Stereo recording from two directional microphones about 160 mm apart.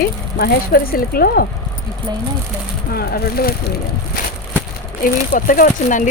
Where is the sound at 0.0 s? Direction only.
70° left (ahead or behind).